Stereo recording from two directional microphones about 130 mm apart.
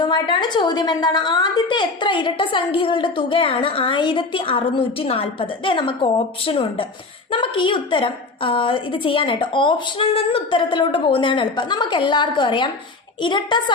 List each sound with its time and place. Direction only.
0.0 s a woman's voice: 35° left (ahead or behind)